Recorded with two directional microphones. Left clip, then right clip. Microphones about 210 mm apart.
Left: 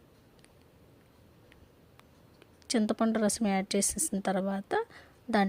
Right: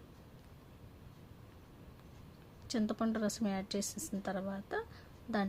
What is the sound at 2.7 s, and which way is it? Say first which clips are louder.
A woman's voice: left 7 dB; 40° left (ahead or behind).